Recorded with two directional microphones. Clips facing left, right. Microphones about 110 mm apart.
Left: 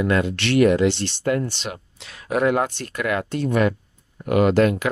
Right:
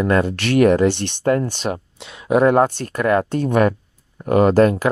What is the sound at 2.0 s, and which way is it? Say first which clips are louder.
Speech: right 6 dB; 25° right (ahead or behind).